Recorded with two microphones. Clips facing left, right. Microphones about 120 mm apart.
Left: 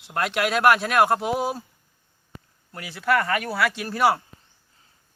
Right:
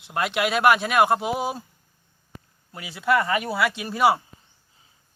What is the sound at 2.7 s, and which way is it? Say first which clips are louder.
Speech: right 1 dB; 5° right (ahead or behind).